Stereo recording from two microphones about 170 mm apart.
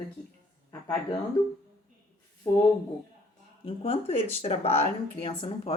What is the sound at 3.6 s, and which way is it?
Speech, 35° left (ahead or behind).